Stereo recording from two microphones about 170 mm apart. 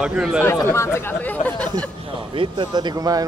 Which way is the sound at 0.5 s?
15° left (ahead or behind).